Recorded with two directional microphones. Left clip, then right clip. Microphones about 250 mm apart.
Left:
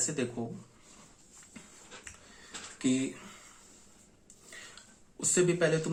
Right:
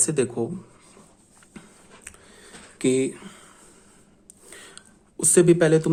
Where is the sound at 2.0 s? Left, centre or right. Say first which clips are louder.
Right 5 dB; right.